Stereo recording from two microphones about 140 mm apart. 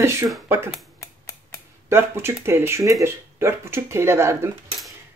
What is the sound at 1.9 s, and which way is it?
Speech, 20° right (ahead or behind).